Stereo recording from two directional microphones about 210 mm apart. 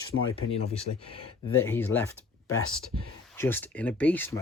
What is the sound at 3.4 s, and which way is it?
Speech, 10° left (ahead or behind).